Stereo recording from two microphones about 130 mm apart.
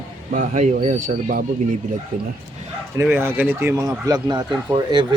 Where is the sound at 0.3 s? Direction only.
70° right (ahead or behind); by 2.3 s 90° right.